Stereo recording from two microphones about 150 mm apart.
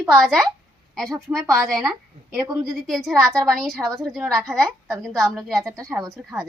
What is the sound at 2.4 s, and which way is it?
Speech, 20° right (ahead or behind).